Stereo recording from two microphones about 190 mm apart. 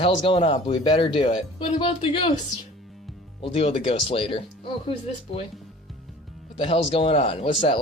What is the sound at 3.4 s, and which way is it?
Speech, 30° left (ahead or behind).